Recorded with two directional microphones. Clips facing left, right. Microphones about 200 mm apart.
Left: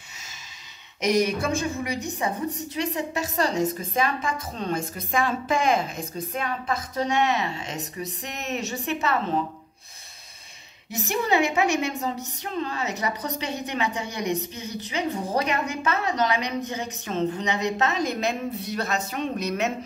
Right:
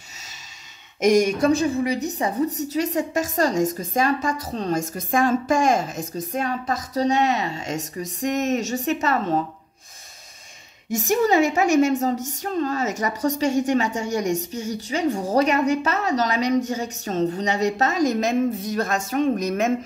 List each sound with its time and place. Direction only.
1.0 s a woman's voice: 45° right (ahead or behind)
10.9 s a woman's voice: 45° right (ahead or behind)